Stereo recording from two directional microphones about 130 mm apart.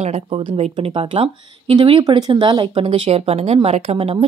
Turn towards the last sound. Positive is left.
turn(degrees=-50)  # may be behind; listen again after turning